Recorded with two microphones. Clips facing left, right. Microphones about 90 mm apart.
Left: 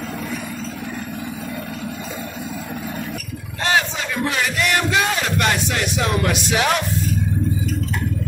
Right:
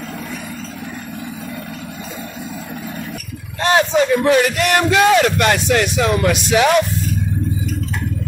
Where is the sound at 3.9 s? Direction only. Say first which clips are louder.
Right 10 dB; 60° right (ahead or behind); by 5.9 s 75° right (ahead or behind).